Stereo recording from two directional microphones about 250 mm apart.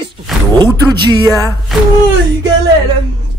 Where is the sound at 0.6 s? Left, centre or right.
Centre.